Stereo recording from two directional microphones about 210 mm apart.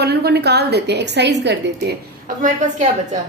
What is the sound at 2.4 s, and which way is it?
Speech, 35° right (ahead or behind).